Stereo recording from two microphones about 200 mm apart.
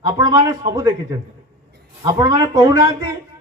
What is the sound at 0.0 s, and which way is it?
A man's voice, 20° right (ahead or behind).